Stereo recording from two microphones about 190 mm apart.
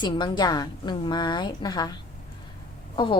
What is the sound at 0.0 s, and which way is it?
A woman's voice, 25° left (ahead or behind).